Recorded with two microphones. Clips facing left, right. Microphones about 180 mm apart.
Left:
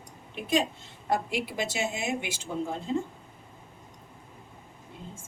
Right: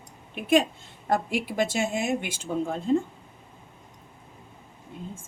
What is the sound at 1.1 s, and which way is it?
A woman's voice, 50° right (ahead or behind).